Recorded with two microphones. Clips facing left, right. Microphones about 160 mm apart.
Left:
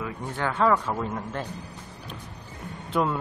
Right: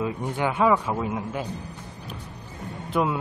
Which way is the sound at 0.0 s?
15° right (ahead or behind).